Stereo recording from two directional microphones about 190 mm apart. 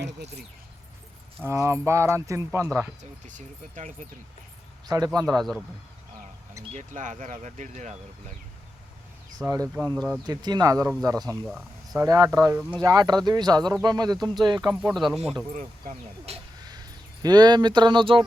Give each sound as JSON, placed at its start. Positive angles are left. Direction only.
{"t": 0.0, "sound": "speech", "side_deg": -60}
{"t": 1.5, "sound": "speech", "side_deg": -15}
{"t": 3.0, "sound": "speech", "side_deg": -40}
{"t": 4.9, "sound": "speech", "side_deg": -20}
{"t": 5.2, "sound": "speech", "side_deg": 0}
{"t": 6.7, "sound": "speech", "side_deg": -40}
{"t": 9.4, "sound": "speech", "side_deg": -15}
{"t": 11.3, "sound": "speech", "side_deg": 0}
{"t": 11.9, "sound": "speech", "side_deg": -20}
{"t": 14.7, "sound": "speech", "side_deg": -5}
{"t": 16.3, "sound": "speech", "side_deg": -35}
{"t": 16.6, "sound": "speech", "side_deg": -20}